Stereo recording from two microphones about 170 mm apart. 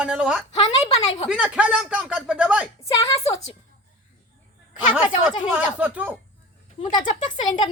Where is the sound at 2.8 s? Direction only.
20° left (ahead or behind).